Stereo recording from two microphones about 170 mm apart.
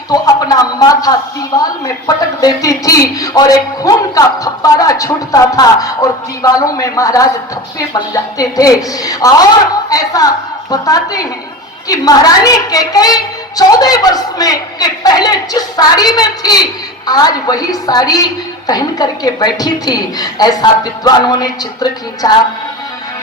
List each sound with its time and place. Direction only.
0.1 s a man's voice: 20° left (ahead or behind)